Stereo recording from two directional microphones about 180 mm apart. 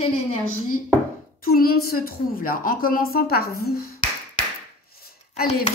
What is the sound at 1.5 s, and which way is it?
A woman's voice, 55° left (ahead or behind).